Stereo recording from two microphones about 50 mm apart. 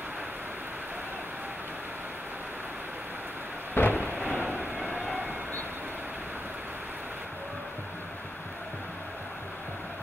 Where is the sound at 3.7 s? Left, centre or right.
Left.